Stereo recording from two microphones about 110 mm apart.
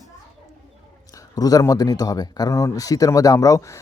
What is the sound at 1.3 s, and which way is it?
Speech, 35° left (ahead or behind).